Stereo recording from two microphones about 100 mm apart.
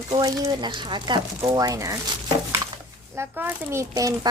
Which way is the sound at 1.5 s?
35° right (ahead or behind).